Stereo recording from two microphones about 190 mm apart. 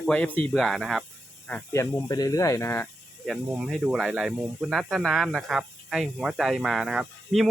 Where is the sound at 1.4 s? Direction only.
10° left (ahead or behind).